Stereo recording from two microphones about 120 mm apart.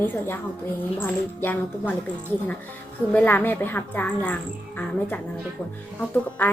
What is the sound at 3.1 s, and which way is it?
Speech, 15° left (ahead or behind).